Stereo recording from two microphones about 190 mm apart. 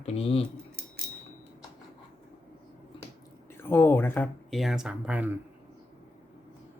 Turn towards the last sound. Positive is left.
turn(degrees=-10)  # may be behind; listen again after turning